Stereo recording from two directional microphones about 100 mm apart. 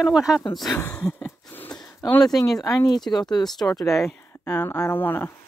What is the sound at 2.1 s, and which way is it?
Speech, 40° left (ahead or behind).